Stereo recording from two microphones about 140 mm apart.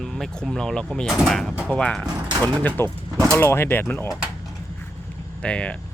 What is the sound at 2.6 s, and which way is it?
Speech, 15° left (ahead or behind).